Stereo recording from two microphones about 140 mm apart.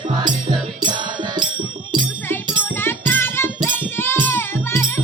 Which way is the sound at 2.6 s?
15° left (ahead or behind).